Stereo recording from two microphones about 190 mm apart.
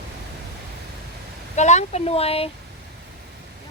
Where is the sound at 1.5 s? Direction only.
40° left (ahead or behind).